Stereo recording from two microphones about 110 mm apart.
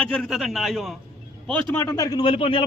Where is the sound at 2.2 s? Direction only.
55° left (ahead or behind).